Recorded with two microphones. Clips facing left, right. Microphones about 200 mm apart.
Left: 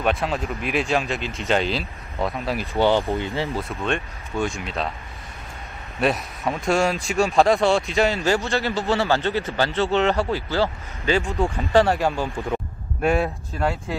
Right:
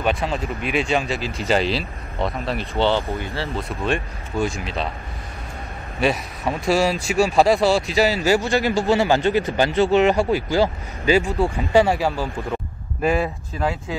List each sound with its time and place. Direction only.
0.0 s speech: centre (ahead or behind)
2.8 s speech: 15° left (ahead or behind)
3.5 s speech: 5° right (ahead or behind)
5.9 s speech: centre (ahead or behind)